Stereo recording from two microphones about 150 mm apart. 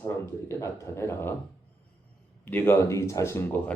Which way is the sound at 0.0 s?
15° left (ahead or behind).